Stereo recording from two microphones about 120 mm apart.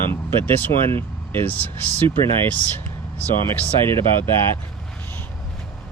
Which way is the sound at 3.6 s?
20° left (ahead or behind).